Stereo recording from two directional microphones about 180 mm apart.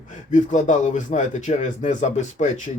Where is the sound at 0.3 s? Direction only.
45° left (ahead or behind).